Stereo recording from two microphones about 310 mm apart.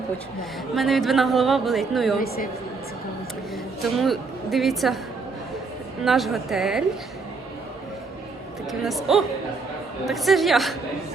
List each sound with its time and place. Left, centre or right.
0.8 s a woman's voice: centre
2.1 s a woman's voice: left
3.8 s a woman's voice: centre
6.0 s a woman's voice: centre
8.8 s a woman's voice: centre